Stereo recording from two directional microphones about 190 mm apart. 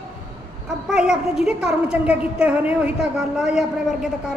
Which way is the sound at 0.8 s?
5° right (ahead or behind).